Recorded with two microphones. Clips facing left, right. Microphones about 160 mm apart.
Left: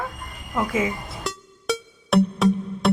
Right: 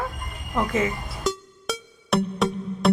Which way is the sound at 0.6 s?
5° left (ahead or behind).